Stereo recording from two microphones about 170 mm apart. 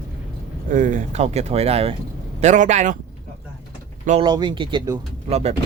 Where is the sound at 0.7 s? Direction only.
50° right (ahead or behind).